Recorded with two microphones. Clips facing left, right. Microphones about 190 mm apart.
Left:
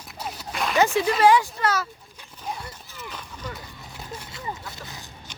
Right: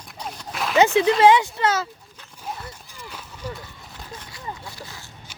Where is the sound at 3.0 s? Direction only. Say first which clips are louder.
Even; 10° right (ahead or behind).